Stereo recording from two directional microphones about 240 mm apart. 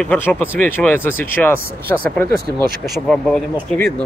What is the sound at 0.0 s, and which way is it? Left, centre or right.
Speech, centre.